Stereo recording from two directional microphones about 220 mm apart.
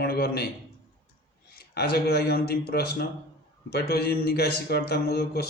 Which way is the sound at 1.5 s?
45° left (ahead or behind).